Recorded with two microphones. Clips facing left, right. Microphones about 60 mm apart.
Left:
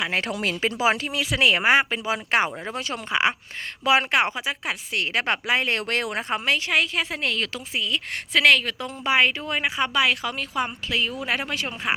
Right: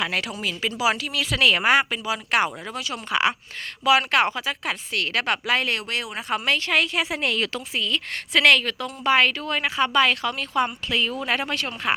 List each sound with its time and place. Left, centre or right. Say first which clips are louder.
0.3 s speech: left 3 dB; left
0.6 s speech: even; left
1.2 s a woman's voice: right 1 dB; centre
5.7 s speech: left 3 dB; left
6.4 s speech: right 1 dB; centre
7.0 s speech: right 2 dB; centre
7.8 s speech: even; centre